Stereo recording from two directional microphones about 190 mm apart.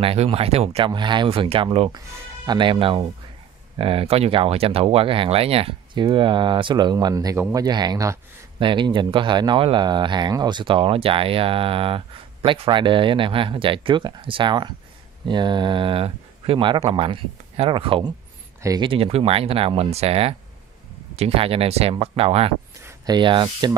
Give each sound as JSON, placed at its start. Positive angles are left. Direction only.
{"t": 0.0, "sound": "speech", "side_deg": -30}